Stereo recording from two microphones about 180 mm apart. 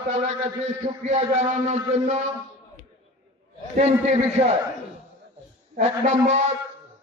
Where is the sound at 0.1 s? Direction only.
40° right (ahead or behind).